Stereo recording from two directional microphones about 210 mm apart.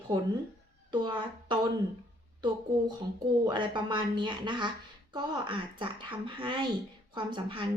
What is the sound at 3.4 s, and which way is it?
Speech, 20° right (ahead or behind).